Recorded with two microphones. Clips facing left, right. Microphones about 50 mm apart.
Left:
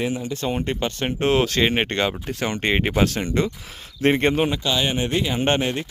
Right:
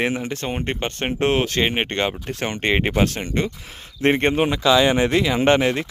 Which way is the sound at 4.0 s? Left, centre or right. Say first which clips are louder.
Right 1 dB; right.